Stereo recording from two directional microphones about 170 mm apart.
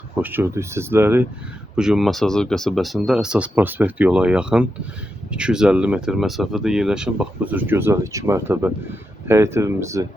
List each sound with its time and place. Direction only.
0.2 s speech: 10° right (ahead or behind)